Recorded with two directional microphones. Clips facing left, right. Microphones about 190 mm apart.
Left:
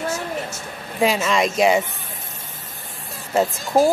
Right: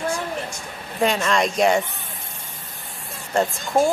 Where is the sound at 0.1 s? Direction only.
5° left (ahead or behind).